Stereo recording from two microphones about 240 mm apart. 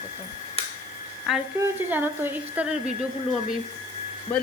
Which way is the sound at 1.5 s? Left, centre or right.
Centre.